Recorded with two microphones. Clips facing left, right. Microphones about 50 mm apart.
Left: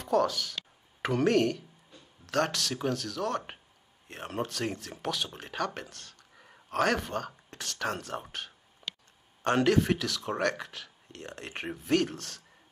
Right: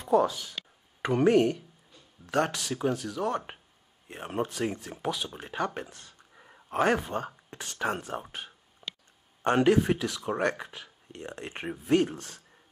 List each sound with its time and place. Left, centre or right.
0.0 s speech: centre
4.5 s speech: centre
5.8 s a sound: centre
6.5 s speech: centre
8.8 s a sound: right
9.4 s speech: centre